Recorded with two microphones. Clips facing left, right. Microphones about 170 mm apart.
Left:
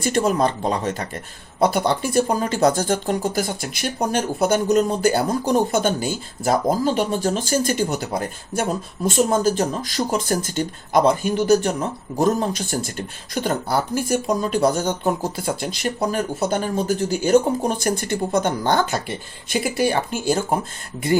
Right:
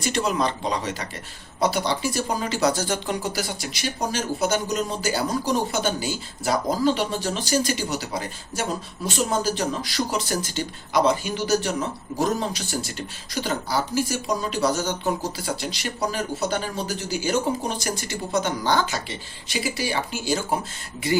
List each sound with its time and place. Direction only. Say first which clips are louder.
0.0 s speech: left 5 dB; 50° left (ahead or behind)